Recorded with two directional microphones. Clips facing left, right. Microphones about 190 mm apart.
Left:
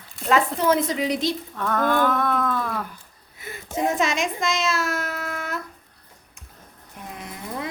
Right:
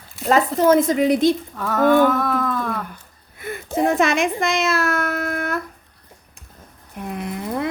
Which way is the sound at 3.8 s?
55° right (ahead or behind).